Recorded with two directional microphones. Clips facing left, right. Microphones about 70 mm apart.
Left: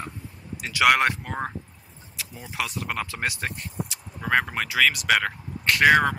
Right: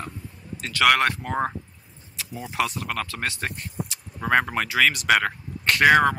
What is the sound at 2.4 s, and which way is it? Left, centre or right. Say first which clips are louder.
Speech: right 5 dB; centre.